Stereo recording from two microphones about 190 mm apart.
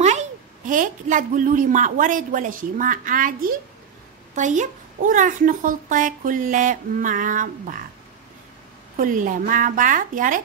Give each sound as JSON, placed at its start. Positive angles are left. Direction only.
{"t": 0.0, "sound": "a child's voice", "side_deg": -40}
{"t": 8.9, "sound": "a child's voice", "side_deg": -45}